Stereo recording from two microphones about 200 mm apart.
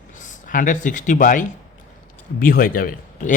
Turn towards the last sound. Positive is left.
turn(degrees=45)  # may be behind; listen again after turning